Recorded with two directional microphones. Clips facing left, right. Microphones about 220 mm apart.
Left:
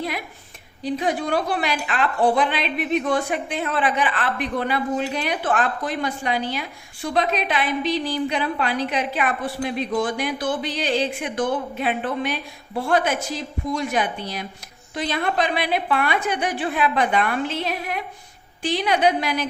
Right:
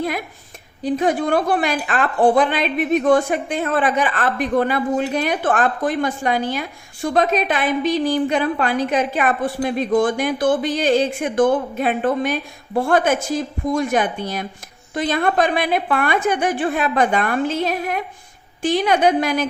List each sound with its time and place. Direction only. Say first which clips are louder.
0.8 s a woman's voice: right 5 dB; 50° right (ahead or behind)